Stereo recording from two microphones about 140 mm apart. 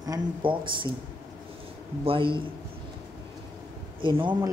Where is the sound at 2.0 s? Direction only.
35° right (ahead or behind).